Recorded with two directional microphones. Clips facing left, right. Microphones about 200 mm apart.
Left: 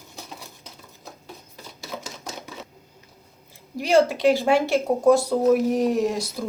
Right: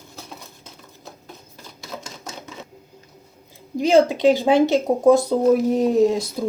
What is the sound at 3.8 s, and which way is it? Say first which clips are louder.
Speech: right 3 dB; 20° right (ahead or behind).